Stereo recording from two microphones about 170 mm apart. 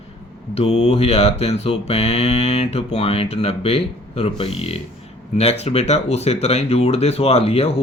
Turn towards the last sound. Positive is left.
turn(degrees=35)  # may be behind; listen again after turning